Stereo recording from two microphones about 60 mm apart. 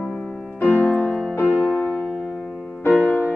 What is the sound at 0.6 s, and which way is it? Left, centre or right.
Music, left.